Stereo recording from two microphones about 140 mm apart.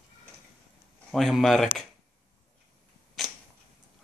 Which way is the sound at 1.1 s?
Centre (ahead or behind).